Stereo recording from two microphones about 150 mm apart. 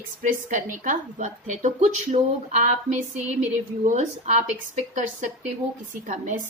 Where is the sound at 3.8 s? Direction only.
50° right (ahead or behind).